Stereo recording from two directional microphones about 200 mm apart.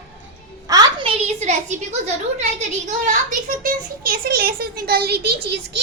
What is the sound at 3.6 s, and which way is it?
A child's voice, 45° right (ahead or behind).